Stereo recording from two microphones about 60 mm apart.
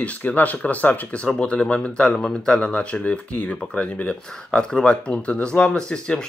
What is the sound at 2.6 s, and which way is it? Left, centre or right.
Speech, left.